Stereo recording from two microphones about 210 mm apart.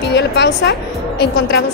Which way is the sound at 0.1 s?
55° left (ahead or behind).